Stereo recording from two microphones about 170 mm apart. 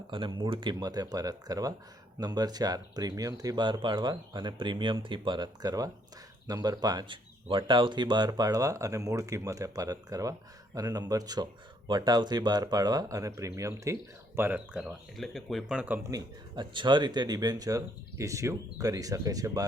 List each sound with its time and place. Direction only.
0.1 s speech: 30° right (ahead or behind); by 16.0 s 5° right (ahead or behind)
16.0 s speech: 25° right (ahead or behind)